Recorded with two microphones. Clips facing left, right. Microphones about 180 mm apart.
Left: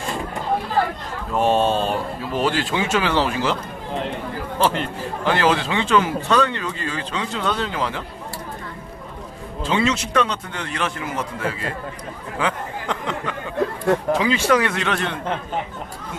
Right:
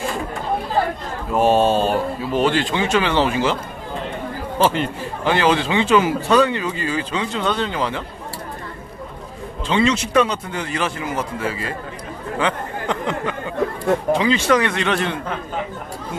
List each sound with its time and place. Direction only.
1.3 s a man's voice: 5° right (ahead or behind)
4.6 s a man's voice: centre (ahead or behind)
9.7 s a man's voice: 5° left (ahead or behind)